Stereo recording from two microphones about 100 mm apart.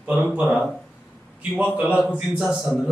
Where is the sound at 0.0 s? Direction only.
10° right (ahead or behind).